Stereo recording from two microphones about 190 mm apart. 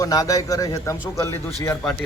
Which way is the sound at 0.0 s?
20° left (ahead or behind).